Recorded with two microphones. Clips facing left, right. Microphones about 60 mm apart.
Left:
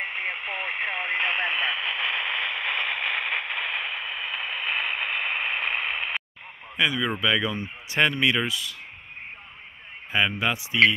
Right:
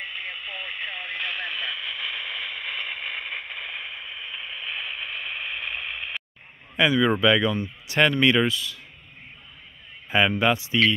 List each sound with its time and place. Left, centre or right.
0.0 s radio: left
6.8 s speech: centre
7.4 s speech: left
8.0 s speech: centre
10.1 s speech: centre